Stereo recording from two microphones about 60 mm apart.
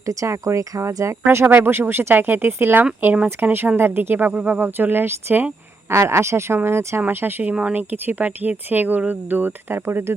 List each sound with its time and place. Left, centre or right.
0.0 s speech: right
1.5 s speech: right
5.9 s speech: right